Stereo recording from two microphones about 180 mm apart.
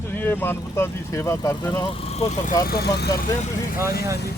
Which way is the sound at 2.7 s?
65° left (ahead or behind).